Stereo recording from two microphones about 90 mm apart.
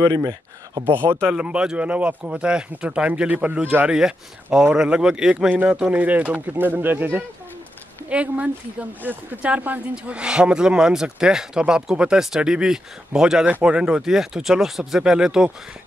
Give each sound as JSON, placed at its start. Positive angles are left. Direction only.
{"t": 0.0, "sound": "speech", "side_deg": -45}
{"t": 0.8, "sound": "speech", "side_deg": -25}
{"t": 1.3, "sound": "speech", "side_deg": -10}